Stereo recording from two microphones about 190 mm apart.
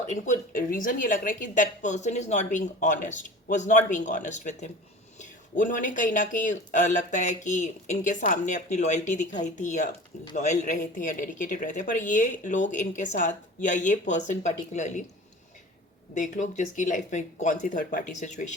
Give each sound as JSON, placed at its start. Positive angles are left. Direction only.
{"t": 0.1, "sound": "speech", "side_deg": 45}
{"t": 16.1, "sound": "speech", "side_deg": 40}